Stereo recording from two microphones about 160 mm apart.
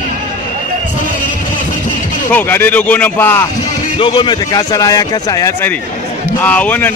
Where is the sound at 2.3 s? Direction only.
10° left (ahead or behind).